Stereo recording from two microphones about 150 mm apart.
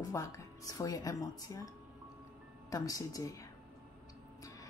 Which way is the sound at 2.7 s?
25° left (ahead or behind).